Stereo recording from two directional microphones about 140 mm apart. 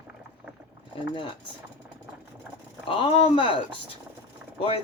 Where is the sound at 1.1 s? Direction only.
35° left (ahead or behind).